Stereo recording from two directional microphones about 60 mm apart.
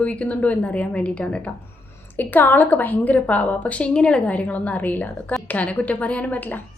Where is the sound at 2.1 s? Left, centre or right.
Left.